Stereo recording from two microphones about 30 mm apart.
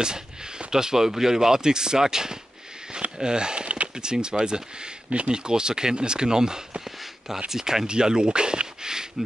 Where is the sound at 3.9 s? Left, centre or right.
Right.